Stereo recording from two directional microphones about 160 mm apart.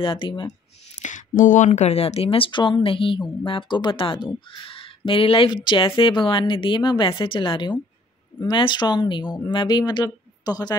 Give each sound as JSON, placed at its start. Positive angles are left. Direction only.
{"t": 0.0, "sound": "speech", "side_deg": 30}
{"t": 0.9, "sound": "speech", "side_deg": 50}